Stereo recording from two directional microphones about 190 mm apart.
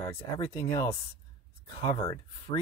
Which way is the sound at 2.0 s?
20° left (ahead or behind).